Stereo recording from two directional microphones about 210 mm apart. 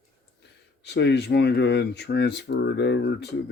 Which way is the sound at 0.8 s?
55° left (ahead or behind).